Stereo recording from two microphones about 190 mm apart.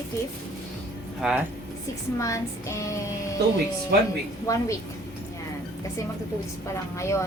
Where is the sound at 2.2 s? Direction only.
15° left (ahead or behind).